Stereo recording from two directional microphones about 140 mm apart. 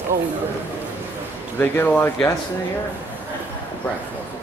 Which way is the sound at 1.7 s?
15° left (ahead or behind).